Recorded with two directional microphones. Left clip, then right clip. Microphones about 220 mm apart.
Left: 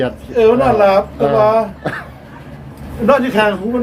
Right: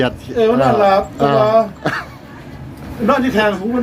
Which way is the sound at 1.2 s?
10° right (ahead or behind).